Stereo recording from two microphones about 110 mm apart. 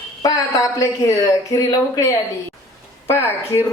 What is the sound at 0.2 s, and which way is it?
Speech, 35° left (ahead or behind).